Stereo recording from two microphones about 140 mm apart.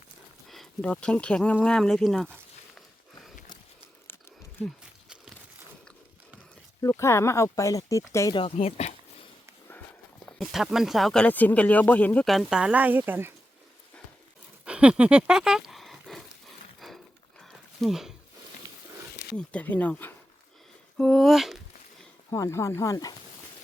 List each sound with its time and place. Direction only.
0.4 s speech: centre (ahead or behind)
4.6 s a sound: 5° right (ahead or behind)
6.8 s speech: 20° left (ahead or behind)
8.3 s speech: 35° left (ahead or behind)
8.5 s speech: 50° left (ahead or behind)
10.2 s speech: centre (ahead or behind); by 13.3 s 15° right (ahead or behind)
14.6 s a sound: 10° right (ahead or behind)
19.4 s speech: 10° left (ahead or behind)
22.3 s speech: 20° left (ahead or behind)